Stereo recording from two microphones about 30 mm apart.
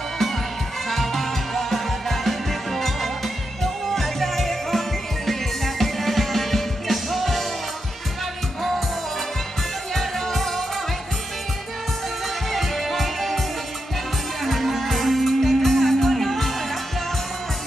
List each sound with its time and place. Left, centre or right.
0.8 s music: centre
9.9 s music: centre
12.4 s music: centre
14.4 s music: centre